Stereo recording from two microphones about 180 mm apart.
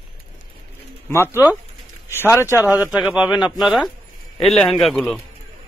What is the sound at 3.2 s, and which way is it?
Speech, 20° left (ahead or behind).